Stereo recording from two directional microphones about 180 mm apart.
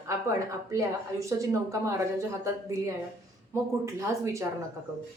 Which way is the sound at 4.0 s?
15° right (ahead or behind).